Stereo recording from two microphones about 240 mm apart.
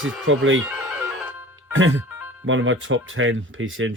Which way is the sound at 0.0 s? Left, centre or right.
Right.